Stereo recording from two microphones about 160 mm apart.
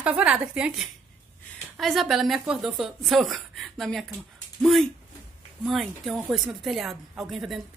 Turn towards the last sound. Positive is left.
turn(degrees=0)  # may be behind; listen again after turning